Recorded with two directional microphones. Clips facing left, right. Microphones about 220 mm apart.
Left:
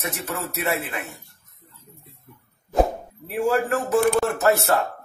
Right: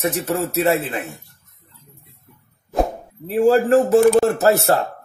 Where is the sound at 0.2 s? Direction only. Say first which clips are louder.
Right 9 dB; 35° right (ahead or behind).